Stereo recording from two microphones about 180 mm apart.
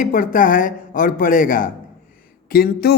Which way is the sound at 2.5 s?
60° left (ahead or behind).